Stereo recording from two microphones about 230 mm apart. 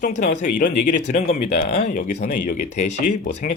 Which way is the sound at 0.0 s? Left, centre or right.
Left.